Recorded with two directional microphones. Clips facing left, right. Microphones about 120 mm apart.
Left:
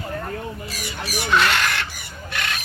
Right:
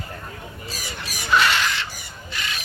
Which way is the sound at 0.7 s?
65° left (ahead or behind).